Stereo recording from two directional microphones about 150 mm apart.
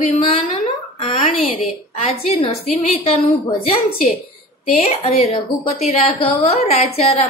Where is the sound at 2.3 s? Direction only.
45° left (ahead or behind).